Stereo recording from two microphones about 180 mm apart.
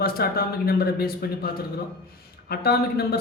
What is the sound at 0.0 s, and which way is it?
A man's voice, 60° left (ahead or behind).